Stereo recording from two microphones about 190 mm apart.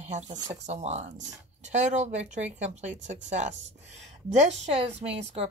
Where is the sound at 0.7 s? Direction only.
35° right (ahead or behind).